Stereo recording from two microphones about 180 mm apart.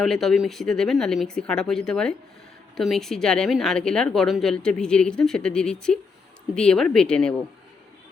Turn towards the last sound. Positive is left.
turn(degrees=5)  # may be behind; listen again after turning